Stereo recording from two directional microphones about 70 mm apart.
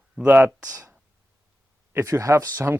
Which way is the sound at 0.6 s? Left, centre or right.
Right.